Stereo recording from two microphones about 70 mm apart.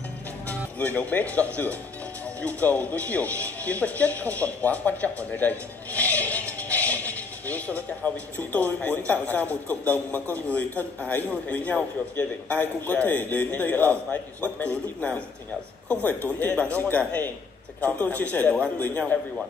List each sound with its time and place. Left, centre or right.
0.5 s a man's voice: left